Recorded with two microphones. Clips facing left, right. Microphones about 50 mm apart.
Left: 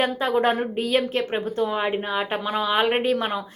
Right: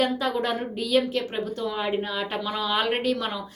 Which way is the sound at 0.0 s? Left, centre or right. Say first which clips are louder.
Left 4 dB; left.